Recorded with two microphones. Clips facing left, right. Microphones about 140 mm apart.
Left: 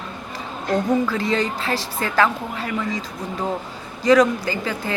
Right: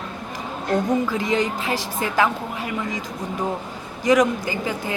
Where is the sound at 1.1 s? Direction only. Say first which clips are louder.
Even; 15° right (ahead or behind).